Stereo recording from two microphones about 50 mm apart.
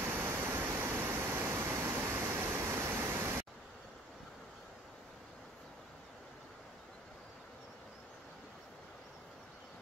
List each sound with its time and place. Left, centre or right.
0.1 s pink noise: right